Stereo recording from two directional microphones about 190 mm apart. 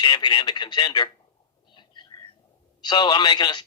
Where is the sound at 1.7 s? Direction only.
25° left (ahead or behind).